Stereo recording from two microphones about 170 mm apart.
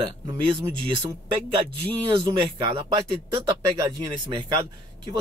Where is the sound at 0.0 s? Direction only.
30° right (ahead or behind).